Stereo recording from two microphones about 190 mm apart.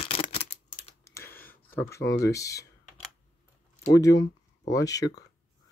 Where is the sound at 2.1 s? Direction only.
15° left (ahead or behind).